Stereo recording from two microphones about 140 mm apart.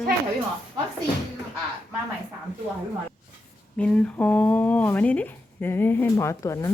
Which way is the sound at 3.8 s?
10° left (ahead or behind).